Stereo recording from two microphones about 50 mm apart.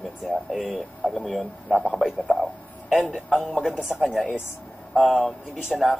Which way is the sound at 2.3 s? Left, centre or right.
Centre.